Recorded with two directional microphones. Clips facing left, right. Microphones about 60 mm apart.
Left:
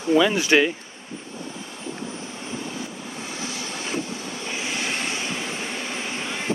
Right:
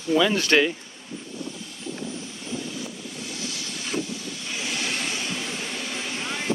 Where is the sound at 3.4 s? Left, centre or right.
Left.